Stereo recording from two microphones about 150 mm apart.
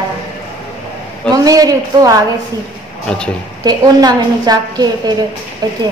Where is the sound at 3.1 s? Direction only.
10° left (ahead or behind).